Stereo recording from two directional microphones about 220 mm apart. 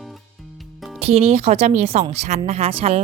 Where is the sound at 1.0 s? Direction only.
30° right (ahead or behind).